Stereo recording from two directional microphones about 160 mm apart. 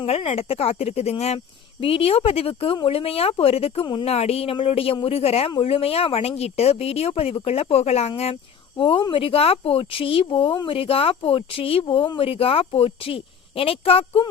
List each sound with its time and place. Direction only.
0.0 s speech: 40° left (ahead or behind)